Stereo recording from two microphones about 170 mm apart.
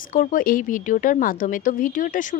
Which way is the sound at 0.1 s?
55° left (ahead or behind).